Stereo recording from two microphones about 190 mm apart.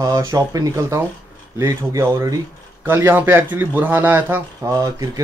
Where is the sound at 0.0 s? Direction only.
20° right (ahead or behind).